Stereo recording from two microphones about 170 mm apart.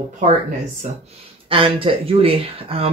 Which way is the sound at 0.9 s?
40° right (ahead or behind).